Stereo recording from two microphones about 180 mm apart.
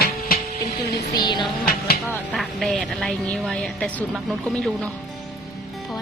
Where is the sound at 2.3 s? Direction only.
Centre (ahead or behind).